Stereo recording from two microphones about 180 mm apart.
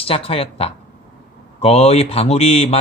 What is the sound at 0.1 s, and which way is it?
Speech, 30° left (ahead or behind).